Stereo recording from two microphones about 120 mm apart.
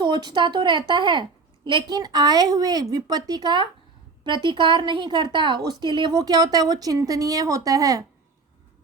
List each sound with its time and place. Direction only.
0.0 s speech: 40° right (ahead or behind)